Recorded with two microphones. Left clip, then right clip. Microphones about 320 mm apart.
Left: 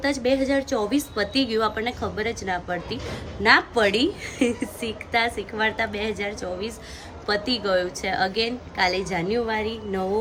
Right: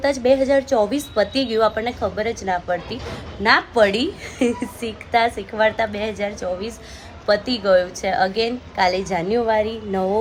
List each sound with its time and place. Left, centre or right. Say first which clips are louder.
0.0 s a woman's voice: right 6 dB; centre